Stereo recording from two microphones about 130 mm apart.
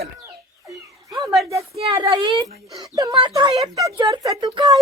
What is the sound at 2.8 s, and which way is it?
A woman's voice, 25° right (ahead or behind).